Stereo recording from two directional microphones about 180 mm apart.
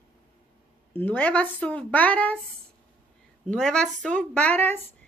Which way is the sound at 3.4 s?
5° left (ahead or behind).